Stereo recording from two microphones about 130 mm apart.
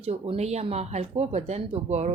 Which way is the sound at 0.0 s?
55° right (ahead or behind).